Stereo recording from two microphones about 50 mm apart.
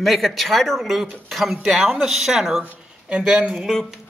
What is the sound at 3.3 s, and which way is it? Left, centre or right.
Speech, centre.